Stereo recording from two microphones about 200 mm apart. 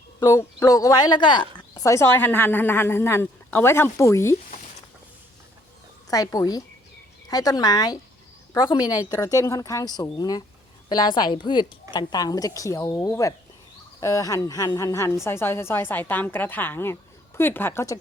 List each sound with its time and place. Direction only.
0.2 s speech: 15° left (ahead or behind)
6.1 s a woman's voice: 20° left (ahead or behind)